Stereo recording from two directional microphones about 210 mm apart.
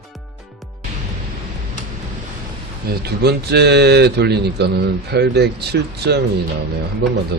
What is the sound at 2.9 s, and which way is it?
Speech, 50° right (ahead or behind).